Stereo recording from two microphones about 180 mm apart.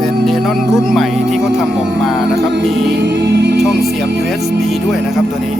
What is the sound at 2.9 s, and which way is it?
Music, 70° right (ahead or behind).